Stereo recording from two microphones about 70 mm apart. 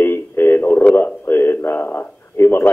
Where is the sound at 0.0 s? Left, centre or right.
Left.